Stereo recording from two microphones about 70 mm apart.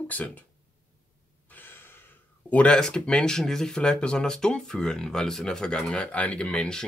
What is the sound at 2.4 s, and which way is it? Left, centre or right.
Speech, centre.